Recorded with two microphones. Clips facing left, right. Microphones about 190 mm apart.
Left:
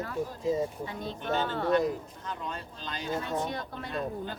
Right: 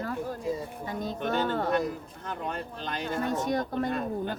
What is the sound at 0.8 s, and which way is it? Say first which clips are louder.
Speech: right 3 dB; 45° right (ahead or behind).